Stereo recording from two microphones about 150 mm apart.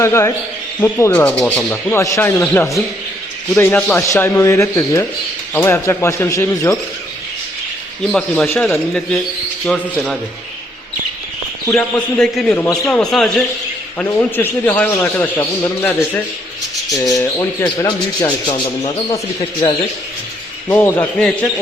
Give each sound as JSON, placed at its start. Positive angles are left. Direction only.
{"t": 0.0, "sound": "a man's voice", "side_deg": 20}
{"t": 1.9, "sound": "a man's voice", "side_deg": 20}
{"t": 8.1, "sound": "a man's voice", "side_deg": 5}
{"t": 11.7, "sound": "a man's voice", "side_deg": 5}